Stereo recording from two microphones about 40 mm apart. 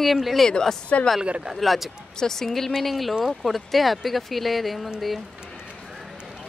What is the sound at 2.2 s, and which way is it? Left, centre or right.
A woman's voice, centre.